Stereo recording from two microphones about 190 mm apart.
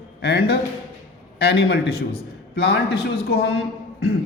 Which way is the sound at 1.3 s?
60° left (ahead or behind).